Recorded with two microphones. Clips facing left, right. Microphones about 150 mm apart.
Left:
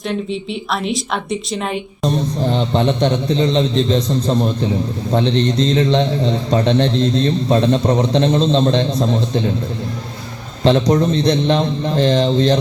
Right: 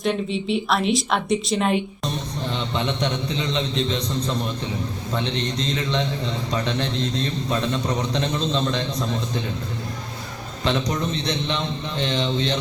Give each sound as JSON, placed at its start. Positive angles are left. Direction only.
{"t": 0.0, "sound": "a woman's voice", "side_deg": 0}
{"t": 2.0, "sound": "a man's voice", "side_deg": 35}
{"t": 10.6, "sound": "a man's voice", "side_deg": 35}